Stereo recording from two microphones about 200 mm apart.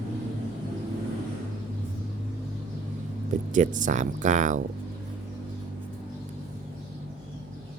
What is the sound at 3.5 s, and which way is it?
Speech, 40° right (ahead or behind).